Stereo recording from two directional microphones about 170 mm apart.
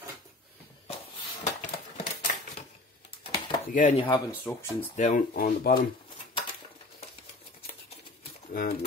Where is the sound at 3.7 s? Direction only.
45° left (ahead or behind).